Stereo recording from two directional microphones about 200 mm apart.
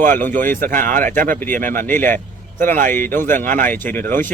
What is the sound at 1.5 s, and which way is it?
Speech, 40° right (ahead or behind).